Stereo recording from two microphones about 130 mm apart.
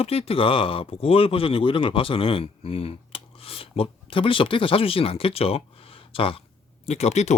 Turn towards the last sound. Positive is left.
turn(degrees=60)  # may be behind; listen again after turning